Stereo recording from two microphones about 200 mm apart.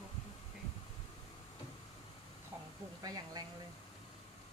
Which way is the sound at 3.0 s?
20° right (ahead or behind).